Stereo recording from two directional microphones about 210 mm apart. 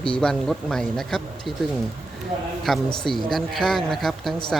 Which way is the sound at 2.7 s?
Centre (ahead or behind).